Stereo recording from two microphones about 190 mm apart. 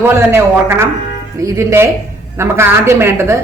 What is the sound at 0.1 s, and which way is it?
A woman's voice, 15° right (ahead or behind).